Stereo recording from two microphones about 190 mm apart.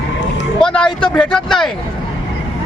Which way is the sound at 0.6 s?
5° left (ahead or behind).